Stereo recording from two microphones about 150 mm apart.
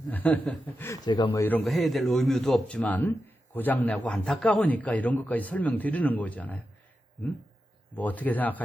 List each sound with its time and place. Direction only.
0.1 s a man's voice: 10° left (ahead or behind)
1.0 s speech: 30° left (ahead or behind)
1.3 s a man's voice: 15° left (ahead or behind)
1.6 s a man's voice: centre (ahead or behind)
7.9 s a man's voice: 10° left (ahead or behind)